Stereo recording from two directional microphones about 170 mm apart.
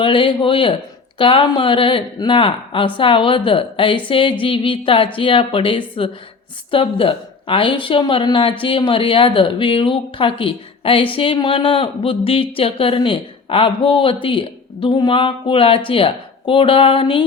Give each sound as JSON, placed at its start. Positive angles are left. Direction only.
{"t": 0.0, "sound": "speech", "side_deg": 30}